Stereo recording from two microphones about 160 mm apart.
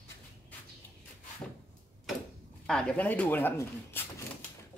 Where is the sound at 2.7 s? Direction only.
5° left (ahead or behind).